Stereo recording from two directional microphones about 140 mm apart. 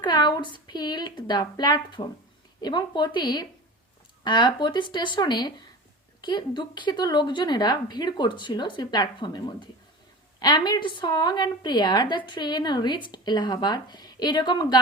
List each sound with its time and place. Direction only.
0.0 s a woman's voice: 30° left (ahead or behind)